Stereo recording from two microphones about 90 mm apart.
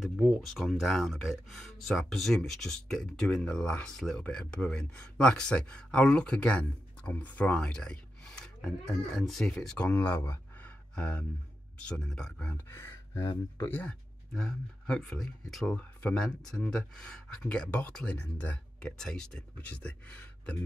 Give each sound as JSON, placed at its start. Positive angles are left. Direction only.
{"t": 0.0, "sound": "speech", "side_deg": 0}
{"t": 9.8, "sound": "speech", "side_deg": 20}
{"t": 11.0, "sound": "speech", "side_deg": 15}
{"t": 12.5, "sound": "gasp", "side_deg": 25}
{"t": 13.7, "sound": "speech", "side_deg": 20}
{"t": 14.3, "sound": "speech", "side_deg": 5}